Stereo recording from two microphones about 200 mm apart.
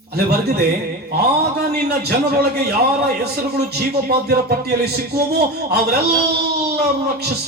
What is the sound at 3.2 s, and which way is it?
Speech, 55° right (ahead or behind).